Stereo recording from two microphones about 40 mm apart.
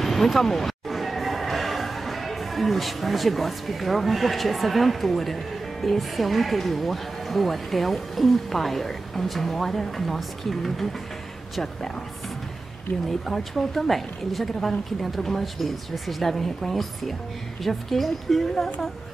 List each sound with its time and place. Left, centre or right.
0.0 s speech: centre
13.3 s a woman's voice: centre